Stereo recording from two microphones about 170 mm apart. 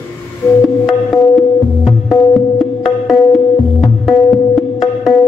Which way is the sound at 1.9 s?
Centre (ahead or behind).